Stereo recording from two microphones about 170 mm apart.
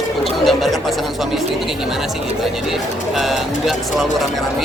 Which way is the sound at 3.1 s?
Centre (ahead or behind).